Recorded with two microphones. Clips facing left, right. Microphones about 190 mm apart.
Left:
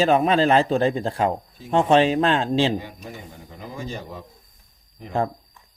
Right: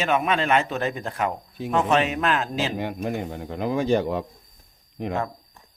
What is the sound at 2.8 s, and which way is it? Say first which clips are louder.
Speech: right 10 dB; 65° right (ahead or behind).